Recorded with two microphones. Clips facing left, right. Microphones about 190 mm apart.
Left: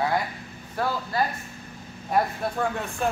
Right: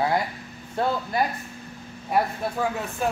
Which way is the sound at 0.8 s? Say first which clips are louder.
Right 2 dB; 20° right (ahead or behind).